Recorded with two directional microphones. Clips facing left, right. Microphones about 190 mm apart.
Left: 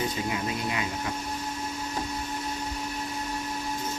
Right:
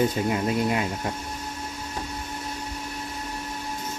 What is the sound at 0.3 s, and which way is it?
Speech, 50° right (ahead or behind).